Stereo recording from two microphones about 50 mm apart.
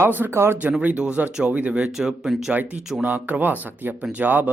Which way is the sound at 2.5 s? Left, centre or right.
Right.